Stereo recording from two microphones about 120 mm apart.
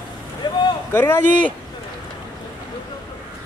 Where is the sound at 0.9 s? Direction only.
15° left (ahead or behind).